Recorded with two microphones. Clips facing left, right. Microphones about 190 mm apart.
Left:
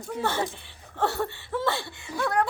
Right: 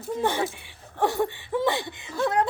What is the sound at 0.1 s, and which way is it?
Speech, 15° right (ahead or behind).